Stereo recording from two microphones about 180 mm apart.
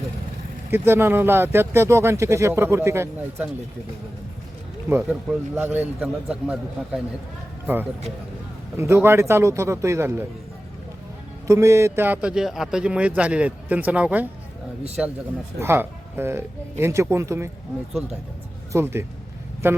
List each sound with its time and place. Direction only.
0.7 s a man's voice: 10° right (ahead or behind)
4.9 s a man's voice: 5° right (ahead or behind)
8.7 s a man's voice: 15° right (ahead or behind)
11.4 s a man's voice: 15° right (ahead or behind)
18.7 s a man's voice: 15° right (ahead or behind)